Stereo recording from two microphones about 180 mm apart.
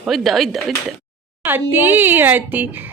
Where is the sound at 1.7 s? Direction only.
10° right (ahead or behind).